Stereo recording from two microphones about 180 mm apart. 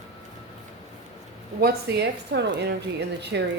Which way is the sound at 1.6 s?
65° right (ahead or behind).